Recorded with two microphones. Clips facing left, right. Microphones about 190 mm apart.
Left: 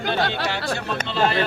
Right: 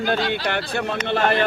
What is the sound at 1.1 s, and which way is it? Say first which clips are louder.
Speech: right 1 dB; 55° right (ahead or behind).